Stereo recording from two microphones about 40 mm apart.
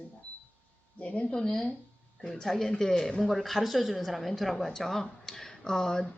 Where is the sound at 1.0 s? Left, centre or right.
Left.